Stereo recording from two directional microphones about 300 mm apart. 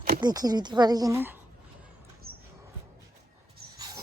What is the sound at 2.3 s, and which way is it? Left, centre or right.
Mouse, right.